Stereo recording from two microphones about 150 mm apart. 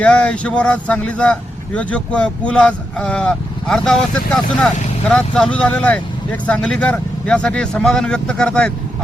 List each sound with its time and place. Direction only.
0.0 s speech: 5° left (ahead or behind)